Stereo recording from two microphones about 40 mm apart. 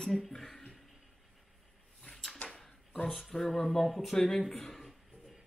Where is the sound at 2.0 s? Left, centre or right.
Centre.